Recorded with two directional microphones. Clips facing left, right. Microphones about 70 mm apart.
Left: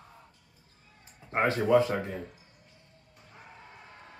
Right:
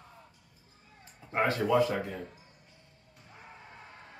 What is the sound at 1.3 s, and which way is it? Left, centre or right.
Speech, left.